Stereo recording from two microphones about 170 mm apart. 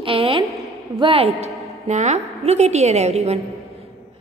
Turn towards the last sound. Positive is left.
turn(degrees=-40)  # may be behind; listen again after turning